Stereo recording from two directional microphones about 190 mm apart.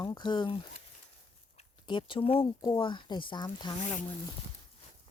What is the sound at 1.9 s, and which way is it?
Speech, 25° left (ahead or behind).